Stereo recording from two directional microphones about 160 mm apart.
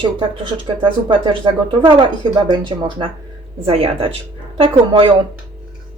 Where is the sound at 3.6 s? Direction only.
35° right (ahead or behind).